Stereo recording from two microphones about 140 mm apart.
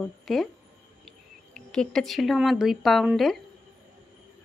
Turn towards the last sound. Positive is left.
turn(degrees=0)  # may be behind; listen again after turning